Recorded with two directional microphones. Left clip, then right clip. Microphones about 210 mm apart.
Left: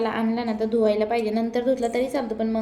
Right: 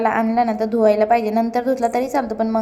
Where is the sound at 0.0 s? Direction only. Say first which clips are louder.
Right 8 dB; 15° right (ahead or behind).